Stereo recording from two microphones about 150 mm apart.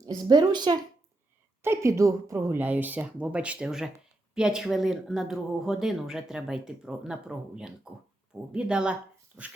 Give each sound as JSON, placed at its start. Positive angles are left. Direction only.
{"t": 0.2, "sound": "a woman's voice", "side_deg": -30}
{"t": 1.6, "sound": "a woman's voice", "side_deg": -20}